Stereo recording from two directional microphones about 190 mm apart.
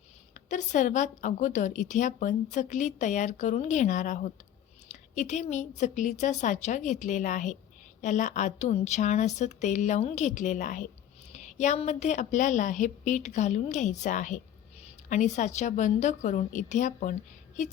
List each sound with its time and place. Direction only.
0.3 s a woman's voice: 40° left (ahead or behind)